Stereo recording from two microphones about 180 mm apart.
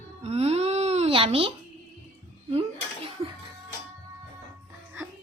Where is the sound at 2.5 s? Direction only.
30° right (ahead or behind).